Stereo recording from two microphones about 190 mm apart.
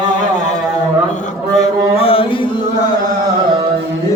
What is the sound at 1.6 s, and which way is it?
Music, 30° left (ahead or behind).